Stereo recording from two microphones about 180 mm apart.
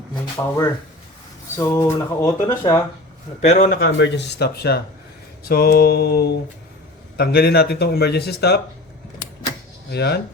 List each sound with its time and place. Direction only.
0.3 s speech: 15° left (ahead or behind)
3.4 s speech: 40° left (ahead or behind)
3.8 s speech: 85° left; by 8.6 s 65° left (ahead or behind)
9.9 s speech: 65° left (ahead or behind)